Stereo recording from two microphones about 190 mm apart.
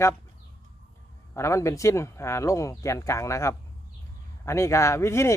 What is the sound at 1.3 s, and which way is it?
Speech, 15° left (ahead or behind).